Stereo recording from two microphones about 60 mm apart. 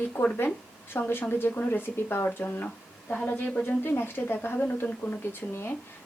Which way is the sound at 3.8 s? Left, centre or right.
Left.